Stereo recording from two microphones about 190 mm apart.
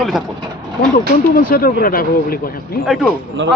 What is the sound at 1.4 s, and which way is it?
A man's voice, 50° left (ahead or behind).